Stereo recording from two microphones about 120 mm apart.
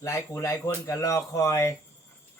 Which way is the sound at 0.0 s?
25° left (ahead or behind).